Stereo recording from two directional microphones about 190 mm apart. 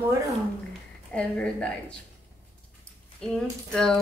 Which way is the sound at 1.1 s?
5° left (ahead or behind).